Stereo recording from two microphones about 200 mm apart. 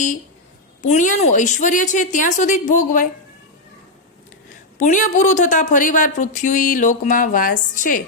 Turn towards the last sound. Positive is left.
turn(degrees=40)  # may be behind; listen again after turning